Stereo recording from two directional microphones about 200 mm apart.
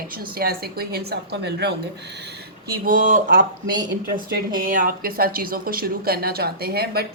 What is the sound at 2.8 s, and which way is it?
Speech, 45° right (ahead or behind).